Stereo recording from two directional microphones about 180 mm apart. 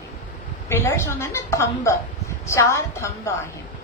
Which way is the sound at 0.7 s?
15° left (ahead or behind).